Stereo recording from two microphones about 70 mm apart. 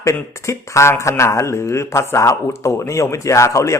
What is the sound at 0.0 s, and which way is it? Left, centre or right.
A man's voice, left.